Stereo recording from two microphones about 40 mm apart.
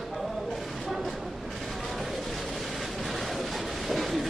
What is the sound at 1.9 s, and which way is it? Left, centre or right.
Vehicle, centre.